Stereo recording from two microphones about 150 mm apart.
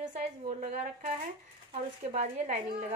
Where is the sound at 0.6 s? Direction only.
45° right (ahead or behind).